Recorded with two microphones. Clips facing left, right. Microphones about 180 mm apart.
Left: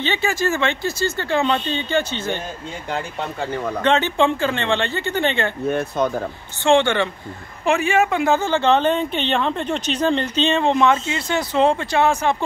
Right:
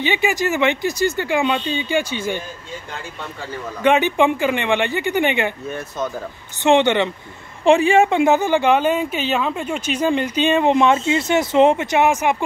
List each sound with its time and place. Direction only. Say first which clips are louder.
0.0 s a woman's voice: right 2 dB; 15° right (ahead or behind)
3.8 s a woman's voice: right 3 dB; 15° right (ahead or behind)
5.7 s speech: left 5 dB; 60° left (ahead or behind)
6.6 s speech: right 1 dB; 20° right (ahead or behind)
7.6 s a woman's voice: right 5 dB; 30° right (ahead or behind); by 12.4 s 15° right (ahead or behind)